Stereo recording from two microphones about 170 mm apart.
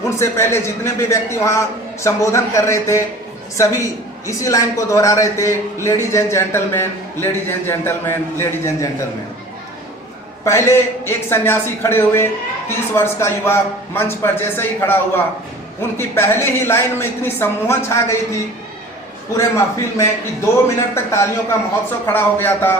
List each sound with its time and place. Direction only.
0.2 s a man's voice: 15° left (ahead or behind)
10.4 s a man's voice: 15° left (ahead or behind)
19.4 s a man's voice: 15° left (ahead or behind)